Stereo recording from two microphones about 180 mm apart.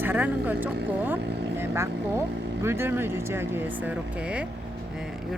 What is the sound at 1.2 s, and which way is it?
Vehicle, 70° right (ahead or behind).